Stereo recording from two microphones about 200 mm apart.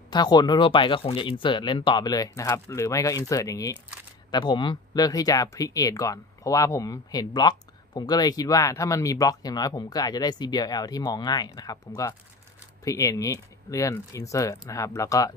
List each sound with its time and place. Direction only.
0.1 s speech: 20° left (ahead or behind)